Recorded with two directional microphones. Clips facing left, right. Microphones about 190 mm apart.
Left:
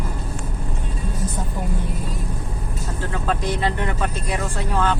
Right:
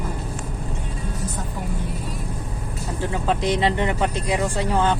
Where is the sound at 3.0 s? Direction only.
15° right (ahead or behind).